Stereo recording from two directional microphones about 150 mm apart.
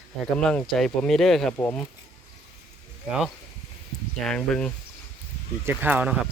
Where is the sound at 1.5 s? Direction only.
15° left (ahead or behind).